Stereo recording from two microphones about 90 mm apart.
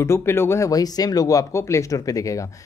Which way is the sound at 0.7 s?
45° left (ahead or behind).